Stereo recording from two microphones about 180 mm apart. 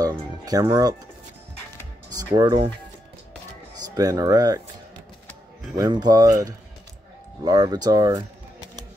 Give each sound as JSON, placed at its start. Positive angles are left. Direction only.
{"t": 0.0, "sound": "music", "side_deg": -20}
{"t": 2.0, "sound": "speech", "side_deg": -20}
{"t": 3.8, "sound": "speech", "side_deg": -20}
{"t": 5.8, "sound": "speech", "side_deg": -20}